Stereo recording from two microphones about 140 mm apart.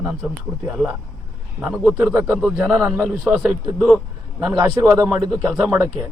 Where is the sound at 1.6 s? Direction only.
5° right (ahead or behind).